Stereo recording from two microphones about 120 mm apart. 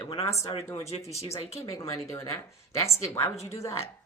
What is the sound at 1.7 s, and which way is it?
A woman's voice, 25° left (ahead or behind).